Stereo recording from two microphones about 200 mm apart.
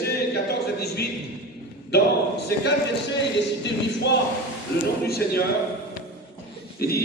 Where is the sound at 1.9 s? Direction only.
55° left (ahead or behind).